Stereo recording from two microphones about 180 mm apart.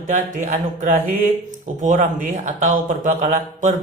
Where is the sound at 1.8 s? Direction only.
45° right (ahead or behind).